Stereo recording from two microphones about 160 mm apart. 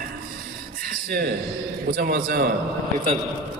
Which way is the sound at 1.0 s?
80° right.